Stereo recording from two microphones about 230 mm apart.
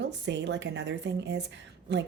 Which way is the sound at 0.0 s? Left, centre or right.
Right.